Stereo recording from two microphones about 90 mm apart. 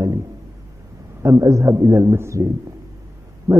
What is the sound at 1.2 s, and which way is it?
A man's voice, 35° right (ahead or behind).